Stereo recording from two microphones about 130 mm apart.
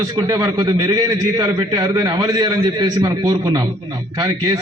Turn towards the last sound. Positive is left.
turn(degrees=-35)  # may be behind; listen again after turning